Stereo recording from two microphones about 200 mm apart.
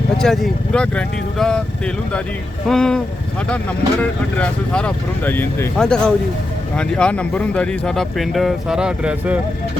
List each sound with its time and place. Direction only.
0.2 s speech: centre (ahead or behind)
2.6 s speech: 5° left (ahead or behind)
4.4 s speech: 5° left (ahead or behind)